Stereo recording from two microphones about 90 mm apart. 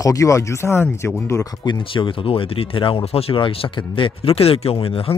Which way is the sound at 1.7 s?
70° left (ahead or behind).